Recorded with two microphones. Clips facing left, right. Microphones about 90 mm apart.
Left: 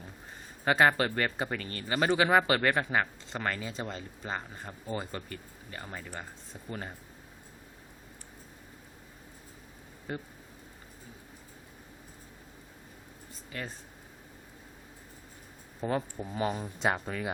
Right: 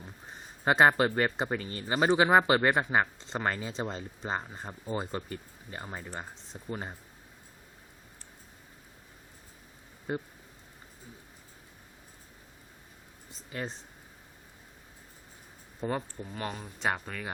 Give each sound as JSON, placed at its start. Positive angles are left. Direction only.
{"t": 0.6, "sound": "speech", "side_deg": -20}
{"t": 10.1, "sound": "speech", "side_deg": -25}
{"t": 13.5, "sound": "speech", "side_deg": -25}
{"t": 16.1, "sound": "speech", "side_deg": 10}